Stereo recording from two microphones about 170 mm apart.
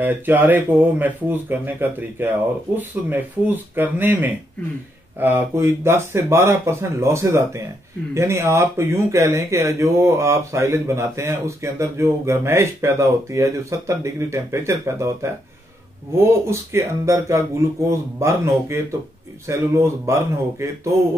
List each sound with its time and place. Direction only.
0.0 s speech: 10° right (ahead or behind)